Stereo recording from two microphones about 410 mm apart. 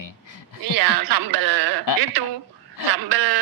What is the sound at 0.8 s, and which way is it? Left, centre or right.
A man's voice, right.